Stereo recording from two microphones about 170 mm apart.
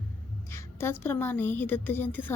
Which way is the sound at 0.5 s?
15° left (ahead or behind).